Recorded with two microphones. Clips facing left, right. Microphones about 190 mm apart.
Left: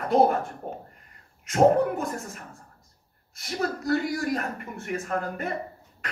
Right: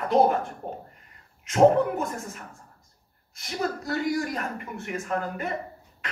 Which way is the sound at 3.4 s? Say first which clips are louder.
Left 1 dB; 45° left (ahead or behind).